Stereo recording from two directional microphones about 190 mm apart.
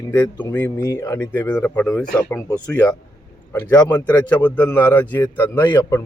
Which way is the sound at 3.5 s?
10° left (ahead or behind).